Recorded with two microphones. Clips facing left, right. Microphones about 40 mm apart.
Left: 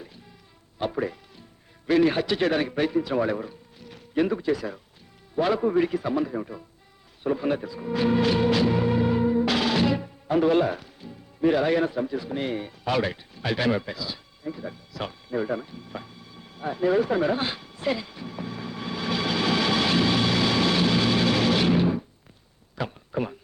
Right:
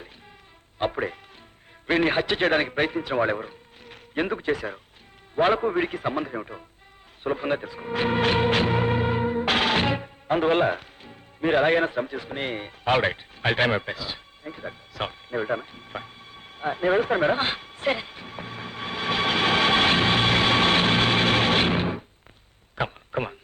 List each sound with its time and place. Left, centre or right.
0.8 s a man's voice: right
7.3 s music: right
22.8 s a sound: right